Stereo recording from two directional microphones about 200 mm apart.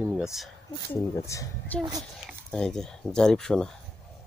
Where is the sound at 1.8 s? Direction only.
20° right (ahead or behind).